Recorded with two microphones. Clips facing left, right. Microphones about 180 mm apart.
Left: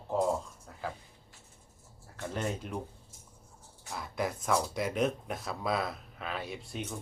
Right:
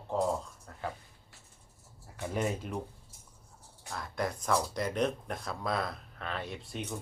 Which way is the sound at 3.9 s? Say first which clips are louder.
Even; 5° left (ahead or behind).